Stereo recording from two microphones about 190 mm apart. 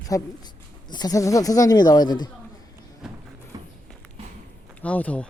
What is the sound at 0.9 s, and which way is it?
Speech, 20° left (ahead or behind).